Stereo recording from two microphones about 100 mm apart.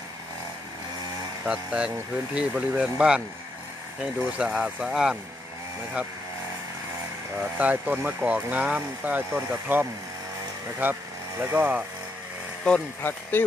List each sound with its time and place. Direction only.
1.4 s speech: 10° right (ahead or behind)
4.5 s speech: centre (ahead or behind)
7.3 s speech: 15° right (ahead or behind)
12.6 s speech: 15° left (ahead or behind)